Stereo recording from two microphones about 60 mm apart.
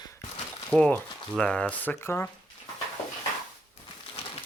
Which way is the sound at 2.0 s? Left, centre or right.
Left.